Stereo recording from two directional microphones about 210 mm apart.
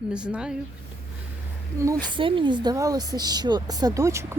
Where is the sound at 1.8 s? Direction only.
15° right (ahead or behind).